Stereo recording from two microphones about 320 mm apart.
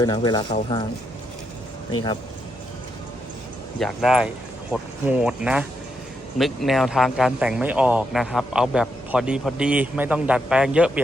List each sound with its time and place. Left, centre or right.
0.0 s speech: centre
3.8 s speech: centre